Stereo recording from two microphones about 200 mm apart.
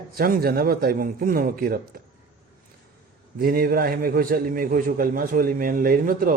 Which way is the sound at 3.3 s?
50° right (ahead or behind).